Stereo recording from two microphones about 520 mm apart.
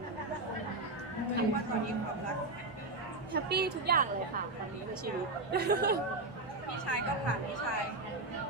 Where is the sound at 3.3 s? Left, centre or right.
Centre.